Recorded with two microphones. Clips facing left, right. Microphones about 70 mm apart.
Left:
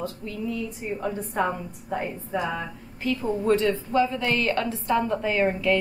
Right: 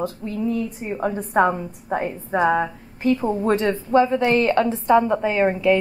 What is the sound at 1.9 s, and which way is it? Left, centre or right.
A woman's voice, right.